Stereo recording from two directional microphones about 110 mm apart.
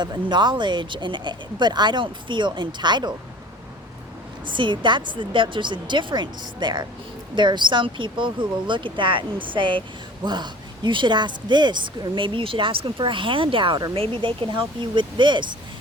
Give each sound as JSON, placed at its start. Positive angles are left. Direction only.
{"t": 0.0, "sound": "speech", "side_deg": -40}
{"t": 4.5, "sound": "speech", "side_deg": -45}